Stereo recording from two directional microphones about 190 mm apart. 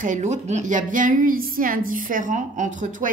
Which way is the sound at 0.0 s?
40° right (ahead or behind).